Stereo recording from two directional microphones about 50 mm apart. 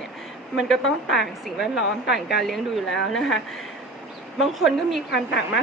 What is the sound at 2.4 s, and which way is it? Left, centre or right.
Speech, centre.